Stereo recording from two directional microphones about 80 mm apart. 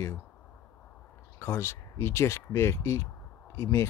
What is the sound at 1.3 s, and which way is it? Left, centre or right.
Speech, left.